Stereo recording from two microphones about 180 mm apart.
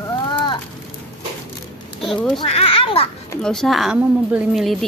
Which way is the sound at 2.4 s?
30° left (ahead or behind).